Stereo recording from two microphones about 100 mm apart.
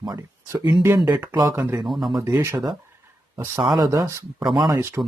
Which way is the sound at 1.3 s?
40° right (ahead or behind).